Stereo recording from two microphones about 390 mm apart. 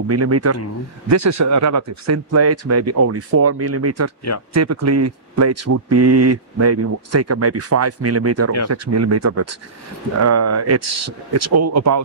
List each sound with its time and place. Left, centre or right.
0.1 s speech: right